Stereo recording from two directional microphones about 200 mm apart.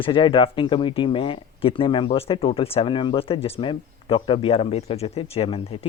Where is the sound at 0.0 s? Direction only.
25° left (ahead or behind).